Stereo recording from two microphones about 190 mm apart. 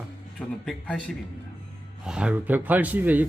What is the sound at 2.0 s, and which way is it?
Speech, 5° right (ahead or behind).